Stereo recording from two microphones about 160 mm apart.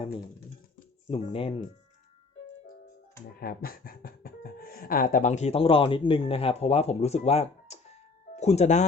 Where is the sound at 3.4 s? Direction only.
70° left (ahead or behind); by 8.9 s 45° left (ahead or behind).